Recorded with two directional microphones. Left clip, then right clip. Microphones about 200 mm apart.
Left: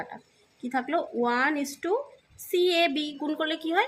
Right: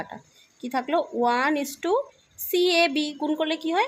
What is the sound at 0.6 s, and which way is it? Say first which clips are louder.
Speech: right 3 dB; 15° right (ahead or behind).